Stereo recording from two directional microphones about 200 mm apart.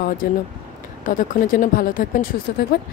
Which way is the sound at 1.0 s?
40° left (ahead or behind).